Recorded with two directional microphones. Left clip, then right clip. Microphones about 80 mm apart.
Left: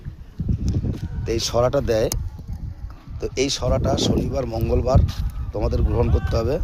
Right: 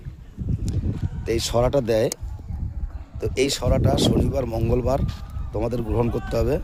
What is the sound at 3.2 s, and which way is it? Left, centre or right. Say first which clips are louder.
Speech: even; right.